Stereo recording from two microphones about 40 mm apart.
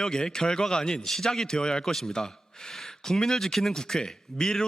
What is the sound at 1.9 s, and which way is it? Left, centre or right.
Speech, centre.